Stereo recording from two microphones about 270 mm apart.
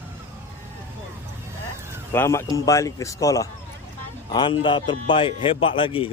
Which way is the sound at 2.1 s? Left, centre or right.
Centre.